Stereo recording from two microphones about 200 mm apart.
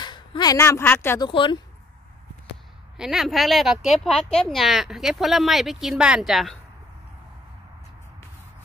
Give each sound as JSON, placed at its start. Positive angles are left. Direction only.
{"t": 0.0, "sound": "speech", "side_deg": 20}
{"t": 1.3, "sound": "speech", "side_deg": 25}
{"t": 3.0, "sound": "speech", "side_deg": 0}